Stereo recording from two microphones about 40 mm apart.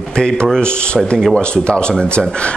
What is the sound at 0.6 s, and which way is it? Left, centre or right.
A man's voice, left.